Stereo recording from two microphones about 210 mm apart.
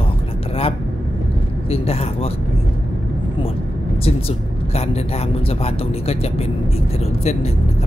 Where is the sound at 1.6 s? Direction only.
30° left (ahead or behind).